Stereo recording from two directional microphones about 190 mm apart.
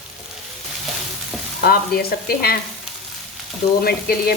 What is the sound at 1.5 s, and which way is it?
Speech, 50° left (ahead or behind).